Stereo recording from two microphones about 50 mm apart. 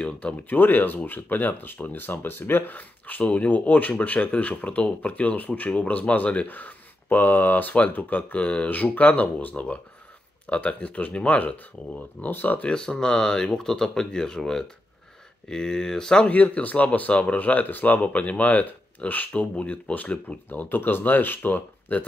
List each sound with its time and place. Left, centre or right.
0.0 s speech: left
0.5 s speech: left
12.6 s speech: centre
16.3 s speech: left
18.0 s speech: left
20.4 s speech: left